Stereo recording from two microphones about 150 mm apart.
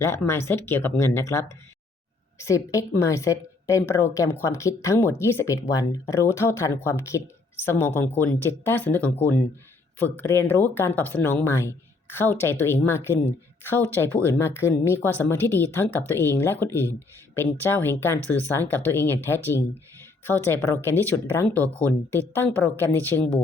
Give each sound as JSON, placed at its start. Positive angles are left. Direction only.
{"t": 0.0, "sound": "a woman's voice", "side_deg": 15}
{"t": 20.9, "sound": "speech", "side_deg": -15}
{"t": 21.3, "sound": "speech", "side_deg": 10}